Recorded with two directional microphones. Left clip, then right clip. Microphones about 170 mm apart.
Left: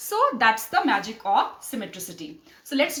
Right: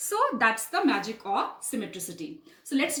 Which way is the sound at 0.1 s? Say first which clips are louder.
Left 4 dB; 25° left (ahead or behind).